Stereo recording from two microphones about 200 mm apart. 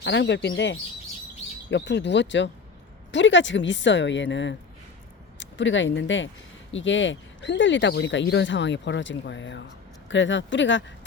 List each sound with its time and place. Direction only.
0.0 s speech: 60° left (ahead or behind)